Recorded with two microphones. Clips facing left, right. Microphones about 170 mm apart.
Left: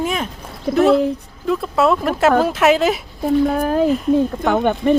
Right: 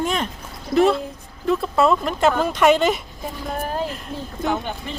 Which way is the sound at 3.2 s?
60° left (ahead or behind).